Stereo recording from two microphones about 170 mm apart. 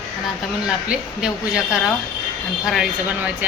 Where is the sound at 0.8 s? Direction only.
5° right (ahead or behind).